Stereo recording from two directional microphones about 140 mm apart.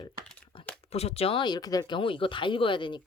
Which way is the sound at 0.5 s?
40° left (ahead or behind).